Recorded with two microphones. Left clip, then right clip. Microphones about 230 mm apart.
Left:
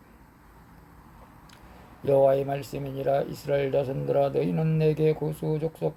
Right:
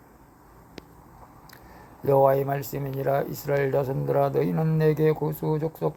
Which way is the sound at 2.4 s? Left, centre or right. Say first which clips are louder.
Right 2 dB; centre.